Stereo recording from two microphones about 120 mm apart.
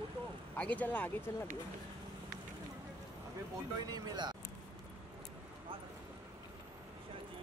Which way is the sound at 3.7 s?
35° right (ahead or behind).